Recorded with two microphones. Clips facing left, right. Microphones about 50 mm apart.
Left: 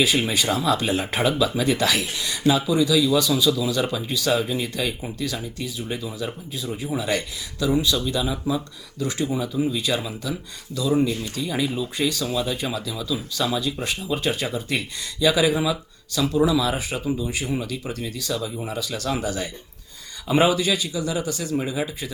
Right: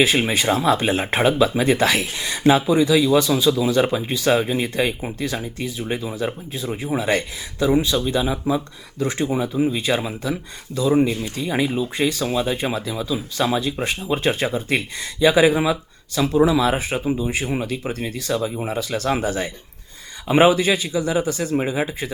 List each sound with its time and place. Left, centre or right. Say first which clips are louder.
0.0 s speech: right 3 dB; right